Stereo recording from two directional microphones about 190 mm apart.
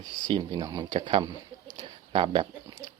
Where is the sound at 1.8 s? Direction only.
25° right (ahead or behind).